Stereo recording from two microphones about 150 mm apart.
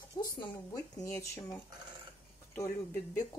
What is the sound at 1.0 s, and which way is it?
Speech, 20° left (ahead or behind).